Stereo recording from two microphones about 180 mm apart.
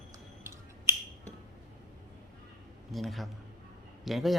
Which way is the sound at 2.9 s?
Centre (ahead or behind).